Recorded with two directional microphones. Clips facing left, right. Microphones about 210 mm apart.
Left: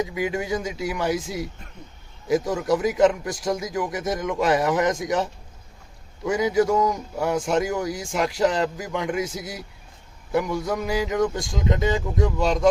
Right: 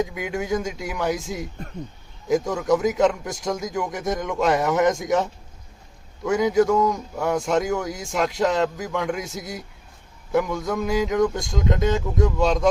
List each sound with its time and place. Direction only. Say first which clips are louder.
0.0 s a man's voice: left 1 dB; centre (ahead or behind)
2.2 s a man's voice: right 1 dB; 5° left (ahead or behind)